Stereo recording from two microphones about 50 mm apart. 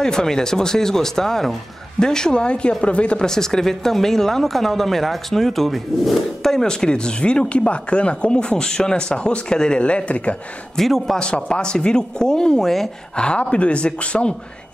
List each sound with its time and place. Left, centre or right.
0.0 s speech: centre
10.8 s speech: centre
11.1 s speech: centre
13.1 s speech: centre